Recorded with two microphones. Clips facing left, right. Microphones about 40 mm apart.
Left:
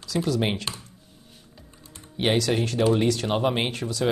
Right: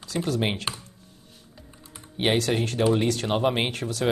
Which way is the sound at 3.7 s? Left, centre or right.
Right.